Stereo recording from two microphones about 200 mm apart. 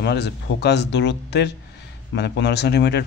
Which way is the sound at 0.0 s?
55° left (ahead or behind).